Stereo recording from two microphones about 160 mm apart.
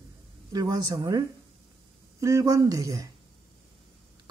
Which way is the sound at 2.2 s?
20° right (ahead or behind).